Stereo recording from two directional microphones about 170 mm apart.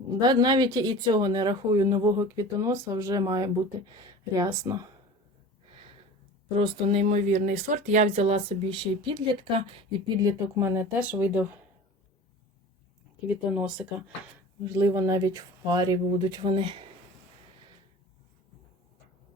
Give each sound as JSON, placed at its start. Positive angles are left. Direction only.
{"t": 0.2, "sound": "speech", "side_deg": -25}
{"t": 6.8, "sound": "speech", "side_deg": -40}
{"t": 10.2, "sound": "speech", "side_deg": -20}
{"t": 13.2, "sound": "speech", "side_deg": -5}
{"t": 14.6, "sound": "speech", "side_deg": -15}